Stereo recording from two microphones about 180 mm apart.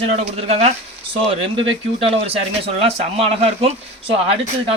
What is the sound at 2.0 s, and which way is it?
Speech, 30° right (ahead or behind).